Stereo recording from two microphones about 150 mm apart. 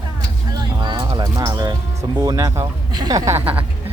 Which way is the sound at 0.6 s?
30° right (ahead or behind).